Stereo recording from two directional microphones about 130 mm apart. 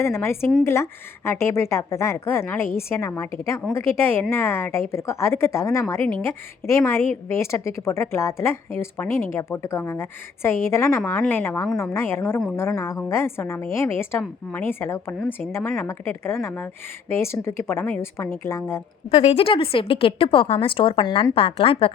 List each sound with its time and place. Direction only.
0.0 s speech: 20° left (ahead or behind)
19.1 s a woman's voice: 50° left (ahead or behind)